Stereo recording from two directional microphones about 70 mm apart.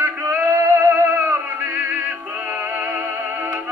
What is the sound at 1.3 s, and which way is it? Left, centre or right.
Music, right.